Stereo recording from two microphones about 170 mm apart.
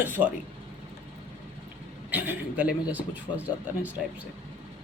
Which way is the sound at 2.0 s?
10° right (ahead or behind).